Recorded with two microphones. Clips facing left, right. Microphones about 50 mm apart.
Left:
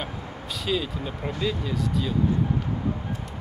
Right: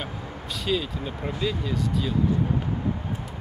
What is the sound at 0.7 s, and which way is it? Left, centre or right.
Speech, centre.